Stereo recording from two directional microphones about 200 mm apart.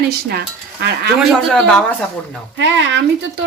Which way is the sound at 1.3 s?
5° left (ahead or behind).